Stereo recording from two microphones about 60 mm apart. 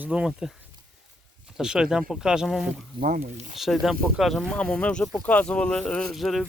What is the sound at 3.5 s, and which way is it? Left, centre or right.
Speech, centre.